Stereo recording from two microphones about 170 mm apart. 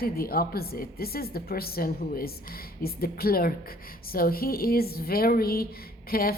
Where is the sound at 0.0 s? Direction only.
60° left (ahead or behind).